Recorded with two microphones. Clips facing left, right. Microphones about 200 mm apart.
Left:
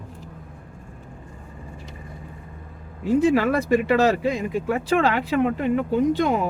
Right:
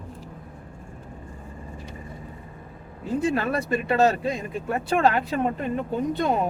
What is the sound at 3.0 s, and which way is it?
Speech, 90° left.